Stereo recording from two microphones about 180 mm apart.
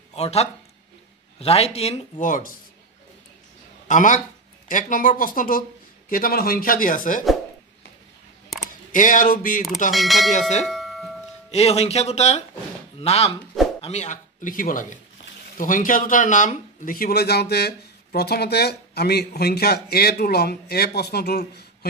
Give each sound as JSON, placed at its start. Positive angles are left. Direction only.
{"t": 0.1, "sound": "speech", "side_deg": 35}
{"t": 3.8, "sound": "speech", "side_deg": 45}
{"t": 8.9, "sound": "speech", "side_deg": 45}
{"t": 9.9, "sound": "speech", "side_deg": 0}
{"t": 10.6, "sound": "doorbell", "side_deg": 0}
{"t": 11.5, "sound": "speech", "side_deg": 35}